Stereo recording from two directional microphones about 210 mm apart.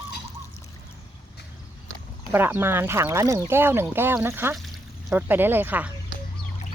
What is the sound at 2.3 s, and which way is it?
Speech, 10° right (ahead or behind).